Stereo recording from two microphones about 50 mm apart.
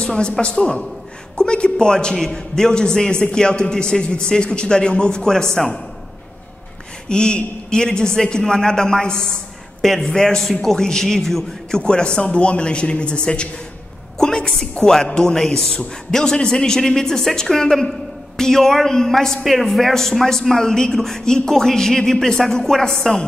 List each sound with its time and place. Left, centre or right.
0.0 s a woman's voice: centre
7.1 s a woman's voice: centre